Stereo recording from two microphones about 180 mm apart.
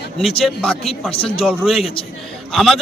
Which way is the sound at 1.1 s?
30° left (ahead or behind).